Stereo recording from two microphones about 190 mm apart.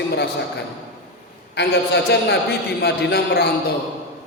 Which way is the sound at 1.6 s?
60° left (ahead or behind).